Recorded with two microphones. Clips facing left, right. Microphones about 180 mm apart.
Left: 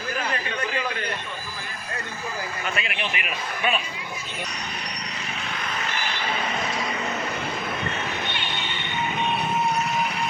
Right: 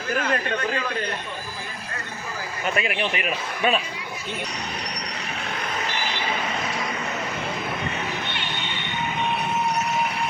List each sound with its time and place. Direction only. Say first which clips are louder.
2.7 s a man's voice: right 5 dB; 35° right (ahead or behind)